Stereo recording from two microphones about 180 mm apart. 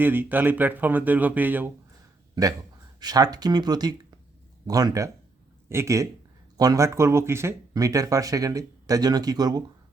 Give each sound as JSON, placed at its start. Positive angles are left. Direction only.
{"t": 0.0, "sound": "speech", "side_deg": -10}
{"t": 3.0, "sound": "speech", "side_deg": -20}